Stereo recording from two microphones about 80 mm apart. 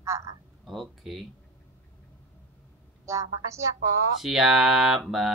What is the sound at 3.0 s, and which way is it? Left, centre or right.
Speech, right.